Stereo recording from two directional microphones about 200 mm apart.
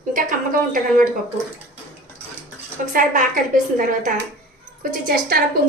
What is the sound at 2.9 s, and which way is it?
A woman's voice, 40° right (ahead or behind).